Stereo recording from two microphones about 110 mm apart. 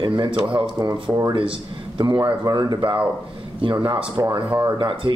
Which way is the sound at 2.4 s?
35° right (ahead or behind).